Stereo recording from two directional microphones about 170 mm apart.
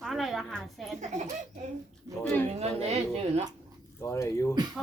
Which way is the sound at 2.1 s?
20° right (ahead or behind).